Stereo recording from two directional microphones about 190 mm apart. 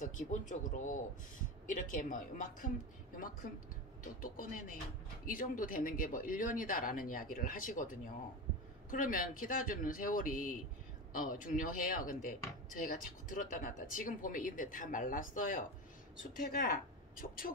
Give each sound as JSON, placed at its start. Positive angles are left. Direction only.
{"t": 0.0, "sound": "speech", "side_deg": 40}
{"t": 4.0, "sound": "speech", "side_deg": 45}